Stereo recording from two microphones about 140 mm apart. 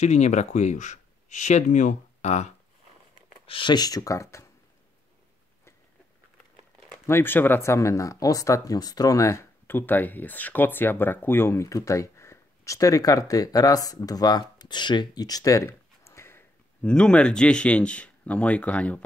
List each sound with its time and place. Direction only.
0.0 s speech: 55° left (ahead or behind)
3.4 s speech: 35° left (ahead or behind); by 4.5 s 20° left (ahead or behind)
7.1 s speech: 15° left (ahead or behind)